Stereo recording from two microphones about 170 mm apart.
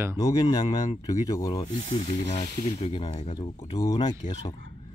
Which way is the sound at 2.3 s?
35° left (ahead or behind).